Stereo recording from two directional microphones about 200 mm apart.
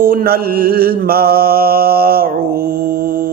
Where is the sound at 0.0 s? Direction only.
50° right (ahead or behind).